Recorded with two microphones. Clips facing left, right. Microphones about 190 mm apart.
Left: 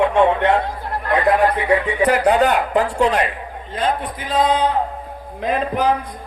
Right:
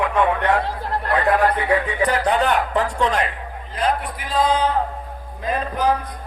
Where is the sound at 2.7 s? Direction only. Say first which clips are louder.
Left 4 dB; 40° left (ahead or behind).